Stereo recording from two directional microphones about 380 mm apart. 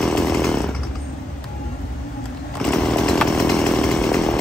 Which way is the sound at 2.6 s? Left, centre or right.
Centre.